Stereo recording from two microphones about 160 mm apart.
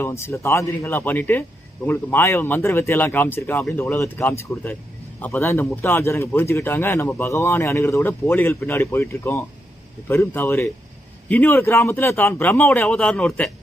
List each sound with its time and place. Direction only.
0.0 s a man's voice: 15° left (ahead or behind)